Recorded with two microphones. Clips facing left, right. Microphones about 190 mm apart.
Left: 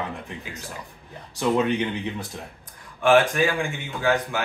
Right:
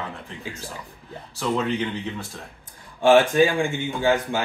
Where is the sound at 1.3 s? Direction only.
20° left (ahead or behind).